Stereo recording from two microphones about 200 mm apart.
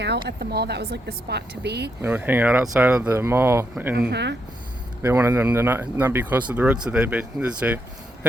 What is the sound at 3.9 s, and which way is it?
Speech, 60° right (ahead or behind).